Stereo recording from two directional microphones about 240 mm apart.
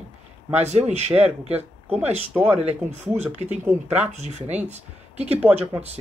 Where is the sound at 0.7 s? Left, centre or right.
Right.